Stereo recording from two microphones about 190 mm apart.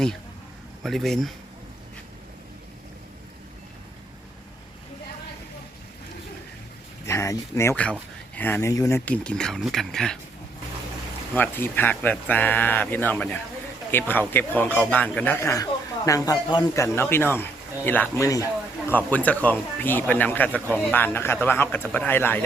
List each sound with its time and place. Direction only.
0.8 s speech: centre (ahead or behind)
7.0 s speech: 15° left (ahead or behind)
11.3 s speech: 10° left (ahead or behind)